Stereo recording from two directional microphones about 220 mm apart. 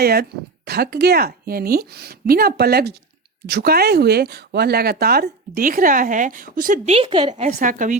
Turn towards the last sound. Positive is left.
turn(degrees=-35)  # may be behind; listen again after turning